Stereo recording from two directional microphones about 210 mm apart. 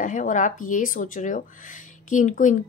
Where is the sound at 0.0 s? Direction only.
40° left (ahead or behind).